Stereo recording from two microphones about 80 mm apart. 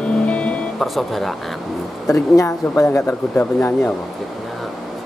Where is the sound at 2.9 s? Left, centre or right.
Left.